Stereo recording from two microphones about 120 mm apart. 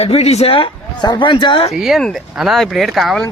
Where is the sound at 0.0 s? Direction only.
60° left (ahead or behind); by 1.7 s 45° left (ahead or behind).